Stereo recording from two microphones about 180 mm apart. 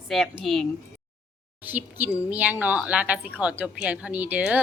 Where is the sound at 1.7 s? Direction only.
10° right (ahead or behind).